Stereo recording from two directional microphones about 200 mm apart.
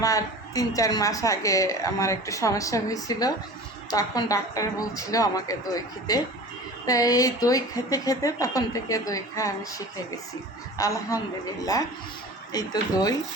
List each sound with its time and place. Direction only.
0.0 s a woman's voice: 15° left (ahead or behind)
12.5 s speech: 20° left (ahead or behind)